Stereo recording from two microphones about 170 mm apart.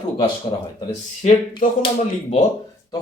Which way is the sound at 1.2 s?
45° left (ahead or behind).